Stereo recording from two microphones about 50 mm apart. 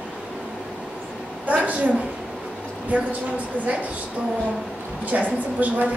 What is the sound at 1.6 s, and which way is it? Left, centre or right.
Speech, right.